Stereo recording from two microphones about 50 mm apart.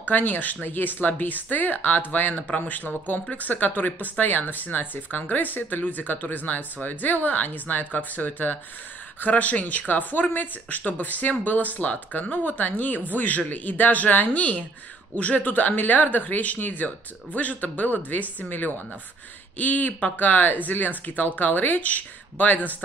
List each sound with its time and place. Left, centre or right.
0.0 s speech: left